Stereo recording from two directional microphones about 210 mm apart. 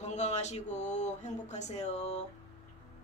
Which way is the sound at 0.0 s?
35° left (ahead or behind).